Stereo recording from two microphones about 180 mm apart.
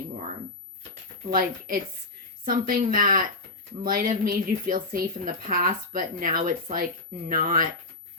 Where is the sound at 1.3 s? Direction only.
50° right (ahead or behind).